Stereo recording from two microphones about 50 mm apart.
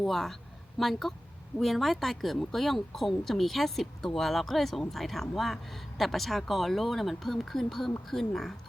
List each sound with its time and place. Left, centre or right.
0.0 s speech: centre